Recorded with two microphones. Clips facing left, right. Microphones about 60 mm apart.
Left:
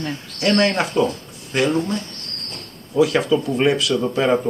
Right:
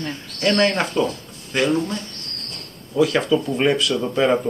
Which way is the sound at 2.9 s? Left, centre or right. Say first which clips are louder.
Left 1 dB; centre.